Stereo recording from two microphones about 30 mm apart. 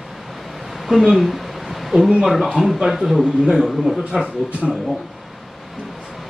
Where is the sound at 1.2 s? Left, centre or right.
Centre.